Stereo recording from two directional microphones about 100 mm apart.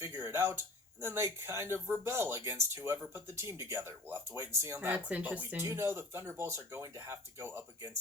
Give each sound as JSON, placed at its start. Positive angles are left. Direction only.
{"t": 0.0, "sound": "speech", "side_deg": -25}
{"t": 5.6, "sound": "speech", "side_deg": -25}